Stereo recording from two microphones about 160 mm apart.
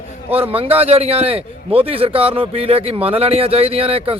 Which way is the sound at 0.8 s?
40° right (ahead or behind).